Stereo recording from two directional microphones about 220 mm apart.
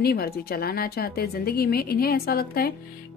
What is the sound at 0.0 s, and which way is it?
A woman's voice, 45° left (ahead or behind).